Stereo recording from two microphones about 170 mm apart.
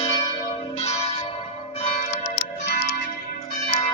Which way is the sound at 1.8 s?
40° left (ahead or behind).